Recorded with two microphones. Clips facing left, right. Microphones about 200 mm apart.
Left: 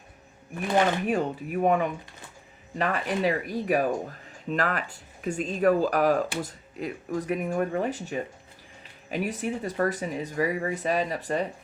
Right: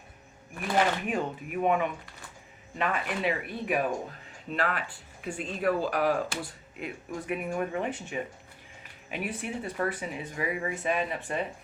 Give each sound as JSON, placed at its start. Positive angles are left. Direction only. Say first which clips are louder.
{"t": 1.0, "sound": "speech", "louder": "left 4 dB", "side_deg": 40}